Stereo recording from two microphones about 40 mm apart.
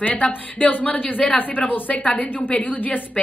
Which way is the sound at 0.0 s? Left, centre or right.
Left.